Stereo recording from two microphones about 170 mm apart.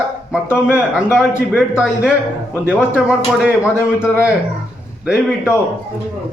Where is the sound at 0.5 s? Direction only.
5° right (ahead or behind).